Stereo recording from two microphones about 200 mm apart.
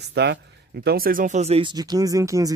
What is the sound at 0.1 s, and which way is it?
Speech, 60° right (ahead or behind).